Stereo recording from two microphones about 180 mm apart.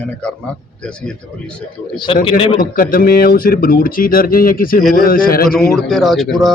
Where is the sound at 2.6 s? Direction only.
50° left (ahead or behind).